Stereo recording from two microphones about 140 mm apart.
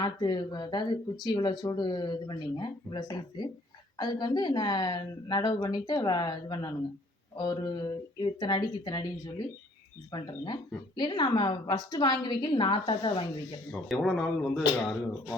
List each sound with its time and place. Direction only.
0.0 s speech: 30° left (ahead or behind)
13.7 s speech: 5° left (ahead or behind)